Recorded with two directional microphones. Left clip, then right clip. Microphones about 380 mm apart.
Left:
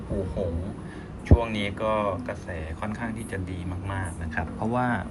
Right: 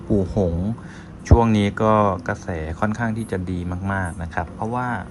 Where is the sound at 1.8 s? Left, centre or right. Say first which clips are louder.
Right 8 dB; centre.